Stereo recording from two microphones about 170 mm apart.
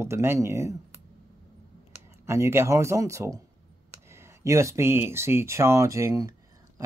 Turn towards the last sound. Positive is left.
turn(degrees=-20)  # may be behind; listen again after turning